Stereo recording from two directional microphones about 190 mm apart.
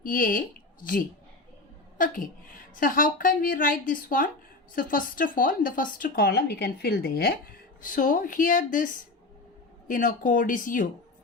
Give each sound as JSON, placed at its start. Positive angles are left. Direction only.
{"t": 0.0, "sound": "speech", "side_deg": 45}
{"t": 2.0, "sound": "speech", "side_deg": 45}